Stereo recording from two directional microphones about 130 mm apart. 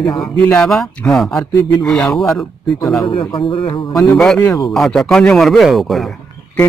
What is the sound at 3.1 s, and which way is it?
Speech, 40° left (ahead or behind).